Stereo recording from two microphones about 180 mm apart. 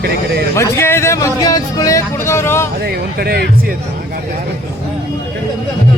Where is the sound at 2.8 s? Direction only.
60° right (ahead or behind).